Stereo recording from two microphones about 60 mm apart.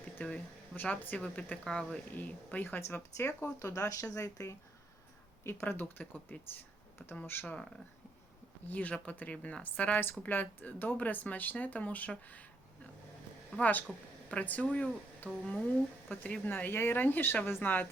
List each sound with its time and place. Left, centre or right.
0.3 s speech: centre
2.1 s a woman's voice: left
3.7 s speech: left
5.4 s speech: left
5.8 s speech: left
7.4 s a woman's voice: centre